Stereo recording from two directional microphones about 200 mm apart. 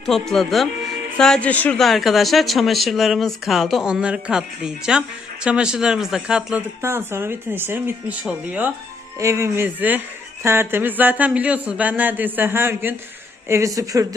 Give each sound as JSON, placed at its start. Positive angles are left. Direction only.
{"t": 0.0, "sound": "speech", "side_deg": 0}